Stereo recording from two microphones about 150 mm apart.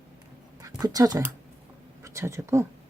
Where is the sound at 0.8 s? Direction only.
25° right (ahead or behind).